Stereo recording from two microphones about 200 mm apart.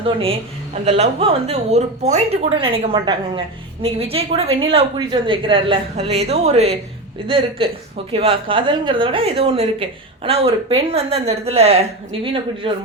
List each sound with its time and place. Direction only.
0.0 s a woman's voice: 30° right (ahead or behind)